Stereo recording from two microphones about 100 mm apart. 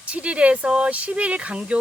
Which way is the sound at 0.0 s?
10° right (ahead or behind).